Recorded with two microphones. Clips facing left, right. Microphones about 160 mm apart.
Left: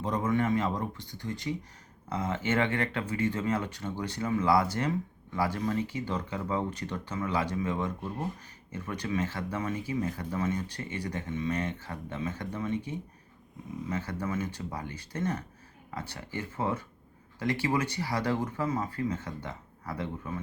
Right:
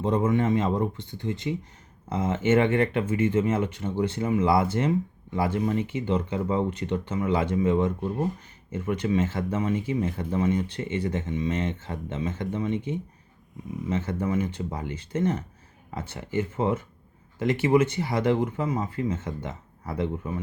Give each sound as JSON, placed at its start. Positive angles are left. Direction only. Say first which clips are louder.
{"t": 0.0, "sound": "speech", "louder": "right 5 dB", "side_deg": -25}